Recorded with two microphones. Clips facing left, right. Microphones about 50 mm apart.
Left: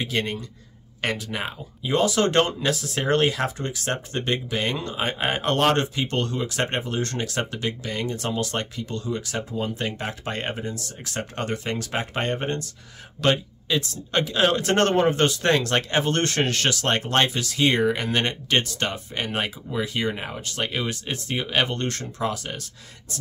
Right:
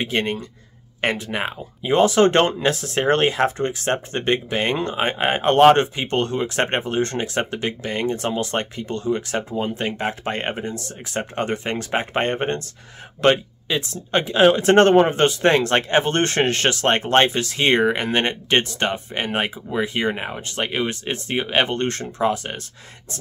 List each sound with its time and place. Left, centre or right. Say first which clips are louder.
0.0 s speech: right 4 dB; right
11.1 s speech: right 5 dB; right